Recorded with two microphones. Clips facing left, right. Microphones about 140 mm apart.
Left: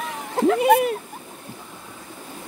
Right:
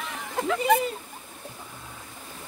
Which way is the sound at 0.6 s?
70° left (ahead or behind).